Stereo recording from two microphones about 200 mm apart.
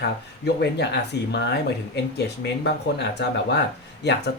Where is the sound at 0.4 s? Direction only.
55° left (ahead or behind).